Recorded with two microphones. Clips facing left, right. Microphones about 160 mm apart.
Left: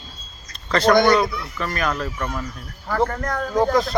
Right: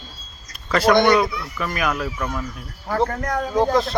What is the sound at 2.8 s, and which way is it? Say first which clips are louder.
Speech: even; 20° right (ahead or behind).